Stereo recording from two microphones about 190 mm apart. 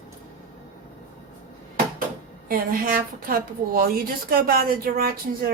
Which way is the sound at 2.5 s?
50° right (ahead or behind).